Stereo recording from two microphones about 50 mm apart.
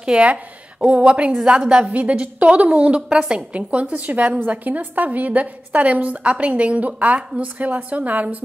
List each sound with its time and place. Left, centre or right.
0.0 s a woman's voice: right
3.1 s a woman's voice: centre